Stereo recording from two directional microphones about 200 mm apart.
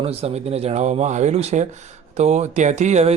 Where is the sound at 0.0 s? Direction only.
30° right (ahead or behind).